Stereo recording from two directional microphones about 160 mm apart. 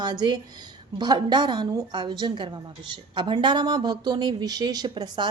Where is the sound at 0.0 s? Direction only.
25° right (ahead or behind).